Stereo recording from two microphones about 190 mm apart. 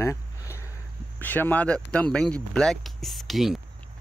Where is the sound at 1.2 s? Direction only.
10° left (ahead or behind).